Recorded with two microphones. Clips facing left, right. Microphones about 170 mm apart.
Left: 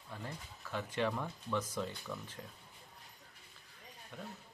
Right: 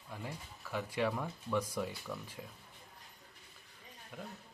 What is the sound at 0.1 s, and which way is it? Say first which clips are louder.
Speech: right 1 dB; 10° right (ahead or behind).